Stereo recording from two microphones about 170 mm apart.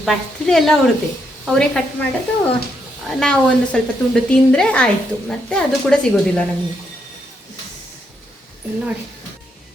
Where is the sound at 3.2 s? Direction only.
5° left (ahead or behind).